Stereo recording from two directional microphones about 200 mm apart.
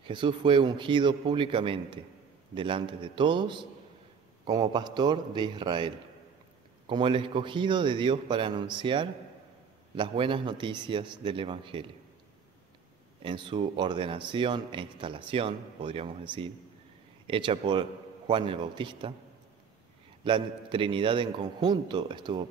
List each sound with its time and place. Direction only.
0.0 s a man's voice: 25° right (ahead or behind)
13.2 s a man's voice: 25° right (ahead or behind)
20.2 s a man's voice: 25° right (ahead or behind)